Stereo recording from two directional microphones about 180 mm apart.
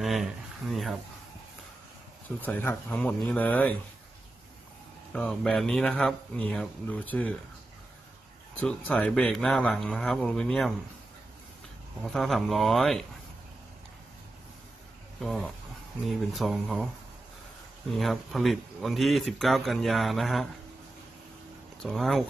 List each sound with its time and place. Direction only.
0.0 s a sound: centre (ahead or behind)
2.2 s speech: 10° left (ahead or behind)
5.1 s speech: 5° left (ahead or behind)
8.5 s speech: 10° left (ahead or behind)
12.0 s speech: centre (ahead or behind)
15.1 s speech: centre (ahead or behind)
17.9 s speech: centre (ahead or behind)
21.8 s speech: centre (ahead or behind)